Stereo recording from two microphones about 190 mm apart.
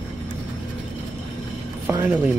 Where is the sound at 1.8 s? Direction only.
10° right (ahead or behind).